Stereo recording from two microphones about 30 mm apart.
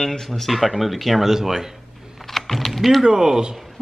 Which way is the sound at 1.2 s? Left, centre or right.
Centre.